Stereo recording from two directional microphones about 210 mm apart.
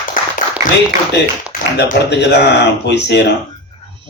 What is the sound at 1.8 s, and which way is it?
Speech, 55° left (ahead or behind).